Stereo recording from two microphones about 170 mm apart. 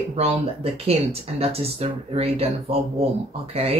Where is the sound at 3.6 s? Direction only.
35° right (ahead or behind).